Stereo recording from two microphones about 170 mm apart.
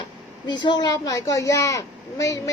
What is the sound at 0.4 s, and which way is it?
Speech, 25° left (ahead or behind).